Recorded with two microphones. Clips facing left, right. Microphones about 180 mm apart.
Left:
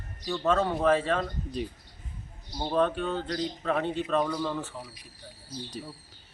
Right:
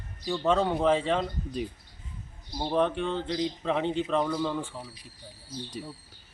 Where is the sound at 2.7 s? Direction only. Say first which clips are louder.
Even; 15° right (ahead or behind).